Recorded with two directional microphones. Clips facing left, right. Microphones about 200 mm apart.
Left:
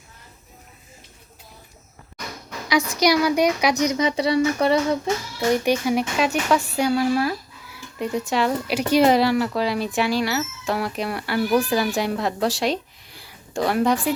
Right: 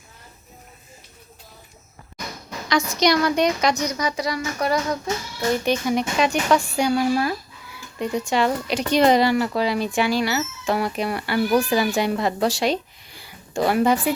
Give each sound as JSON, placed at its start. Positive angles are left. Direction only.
{"t": 3.0, "sound": "speech", "side_deg": 10}
{"t": 5.6, "sound": "speech", "side_deg": 10}